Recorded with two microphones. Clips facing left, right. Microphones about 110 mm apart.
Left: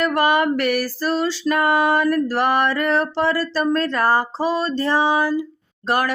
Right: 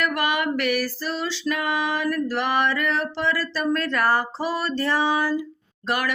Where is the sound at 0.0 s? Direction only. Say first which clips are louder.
Left 6 dB; 35° left (ahead or behind).